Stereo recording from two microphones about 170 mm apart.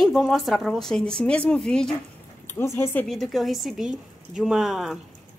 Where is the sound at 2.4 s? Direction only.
15° left (ahead or behind); by 5.0 s 5° right (ahead or behind).